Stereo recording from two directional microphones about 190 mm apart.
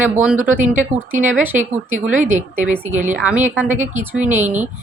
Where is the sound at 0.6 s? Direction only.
40° right (ahead or behind).